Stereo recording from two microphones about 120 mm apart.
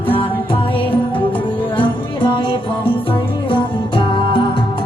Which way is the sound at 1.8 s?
40° left (ahead or behind).